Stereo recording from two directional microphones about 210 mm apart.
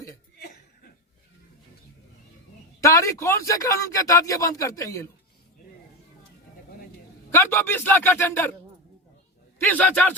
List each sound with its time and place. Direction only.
0.3 s chuckle: 45° left (ahead or behind)
2.8 s a man's voice: 15° left (ahead or behind)
7.3 s a man's voice: 10° left (ahead or behind)
9.6 s a man's voice: 10° left (ahead or behind)